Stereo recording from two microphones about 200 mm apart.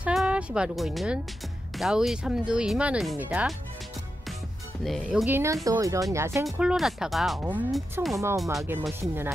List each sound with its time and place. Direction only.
0.0 s speech: 5° right (ahead or behind)
4.8 s speech: centre (ahead or behind)
5.2 s speech: 10° right (ahead or behind)
6.6 s speech: 5° right (ahead or behind)